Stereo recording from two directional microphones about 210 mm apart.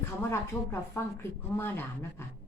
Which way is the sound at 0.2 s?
10° left (ahead or behind).